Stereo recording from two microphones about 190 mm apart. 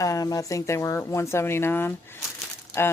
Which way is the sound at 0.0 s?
15° left (ahead or behind).